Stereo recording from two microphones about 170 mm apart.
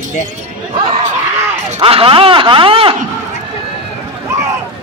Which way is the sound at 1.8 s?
35° right (ahead or behind).